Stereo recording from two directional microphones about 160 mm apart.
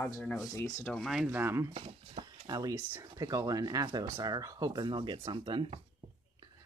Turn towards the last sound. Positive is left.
turn(degrees=-30)  # may be behind; listen again after turning